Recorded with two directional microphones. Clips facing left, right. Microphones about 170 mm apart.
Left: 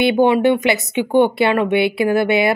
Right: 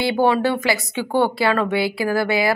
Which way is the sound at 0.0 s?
20° left (ahead or behind).